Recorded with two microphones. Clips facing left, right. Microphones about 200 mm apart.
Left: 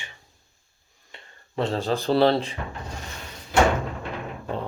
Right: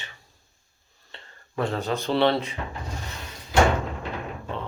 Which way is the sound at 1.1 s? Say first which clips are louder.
Right 1 dB; 10° left (ahead or behind).